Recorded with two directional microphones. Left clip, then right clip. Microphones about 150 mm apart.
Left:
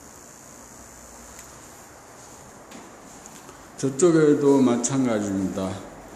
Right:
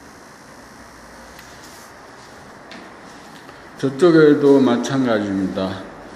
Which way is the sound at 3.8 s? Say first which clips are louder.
Right 6 dB; 25° left (ahead or behind).